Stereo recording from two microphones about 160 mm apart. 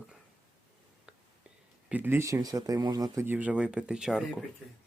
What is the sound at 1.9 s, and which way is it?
Speech, 10° right (ahead or behind).